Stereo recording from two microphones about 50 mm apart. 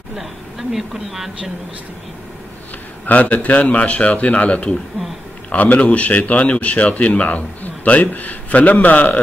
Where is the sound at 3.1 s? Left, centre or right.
Left.